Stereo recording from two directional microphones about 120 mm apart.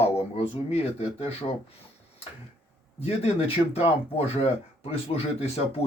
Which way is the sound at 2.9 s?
60° left (ahead or behind).